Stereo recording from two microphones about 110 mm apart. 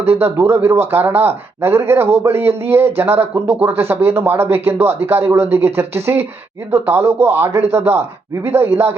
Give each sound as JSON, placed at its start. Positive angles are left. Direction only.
{"t": 0.0, "sound": "a man's voice", "side_deg": -20}